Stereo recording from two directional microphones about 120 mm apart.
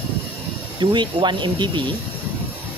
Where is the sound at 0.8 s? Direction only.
40° right (ahead or behind).